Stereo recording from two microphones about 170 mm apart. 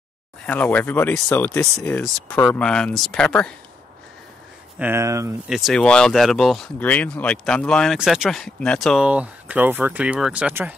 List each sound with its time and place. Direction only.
0.5 s speech: 10° left (ahead or behind)
4.7 s speech: 15° right (ahead or behind)
5.5 s speech: centre (ahead or behind)